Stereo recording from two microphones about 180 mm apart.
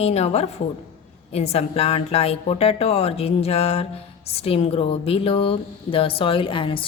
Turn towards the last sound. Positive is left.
turn(degrees=30)  # may be behind; listen again after turning